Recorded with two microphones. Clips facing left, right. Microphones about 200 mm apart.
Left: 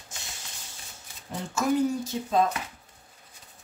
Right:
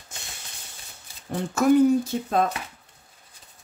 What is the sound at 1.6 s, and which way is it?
Speech, 60° right (ahead or behind).